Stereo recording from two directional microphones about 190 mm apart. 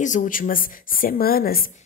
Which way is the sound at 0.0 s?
40° left (ahead or behind).